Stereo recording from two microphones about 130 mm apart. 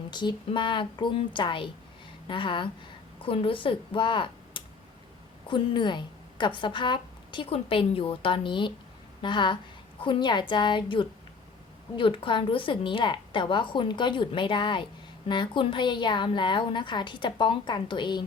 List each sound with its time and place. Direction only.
0.1 s a woman's voice: 35° left (ahead or behind)